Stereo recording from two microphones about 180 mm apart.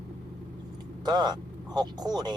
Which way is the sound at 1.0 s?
25° right (ahead or behind).